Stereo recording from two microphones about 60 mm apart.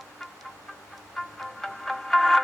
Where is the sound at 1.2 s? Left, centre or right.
Centre.